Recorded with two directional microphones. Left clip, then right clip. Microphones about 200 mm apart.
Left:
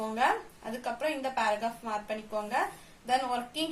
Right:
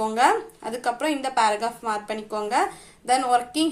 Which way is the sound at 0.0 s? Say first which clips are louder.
Right 8 dB; 35° right (ahead or behind).